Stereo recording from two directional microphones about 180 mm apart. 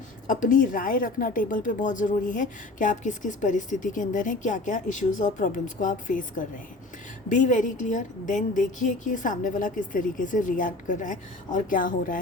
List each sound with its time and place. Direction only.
0.3 s a woman's voice: 50° left (ahead or behind)